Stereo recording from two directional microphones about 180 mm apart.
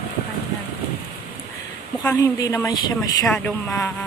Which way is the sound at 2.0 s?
20° left (ahead or behind).